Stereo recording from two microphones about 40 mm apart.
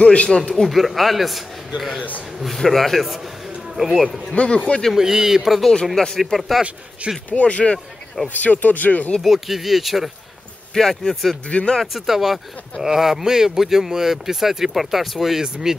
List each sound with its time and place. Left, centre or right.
0.0 s speech: left
0.6 s speech: centre
4.3 s speech: left
4.9 s speech: centre
5.9 s speech: centre
7.2 s speech: left
8.3 s speech: left
9.2 s speech: centre
10.7 s speech: centre
11.4 s speech: left
11.8 s speech: centre